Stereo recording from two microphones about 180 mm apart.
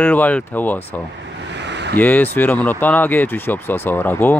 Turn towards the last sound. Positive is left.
turn(degrees=10)  # may be behind; listen again after turning